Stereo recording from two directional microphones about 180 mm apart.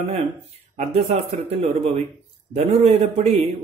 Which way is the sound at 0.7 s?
35° right (ahead or behind).